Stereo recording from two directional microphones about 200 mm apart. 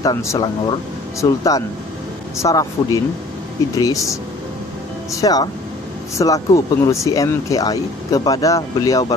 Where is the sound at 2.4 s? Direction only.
15° left (ahead or behind).